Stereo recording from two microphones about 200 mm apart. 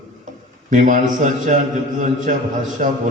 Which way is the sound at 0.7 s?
40° right (ahead or behind).